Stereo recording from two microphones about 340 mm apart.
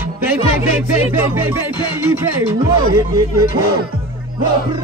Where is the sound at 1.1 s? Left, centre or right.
Centre.